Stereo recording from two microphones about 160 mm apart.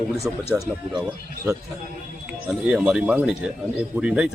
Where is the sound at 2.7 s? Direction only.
5° right (ahead or behind).